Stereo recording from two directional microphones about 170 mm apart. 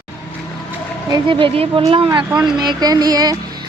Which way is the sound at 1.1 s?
30° right (ahead or behind).